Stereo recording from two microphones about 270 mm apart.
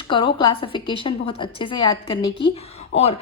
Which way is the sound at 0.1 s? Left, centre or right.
Centre.